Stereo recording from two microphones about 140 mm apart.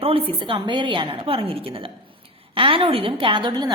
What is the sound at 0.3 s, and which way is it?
A woman's voice, 35° right (ahead or behind).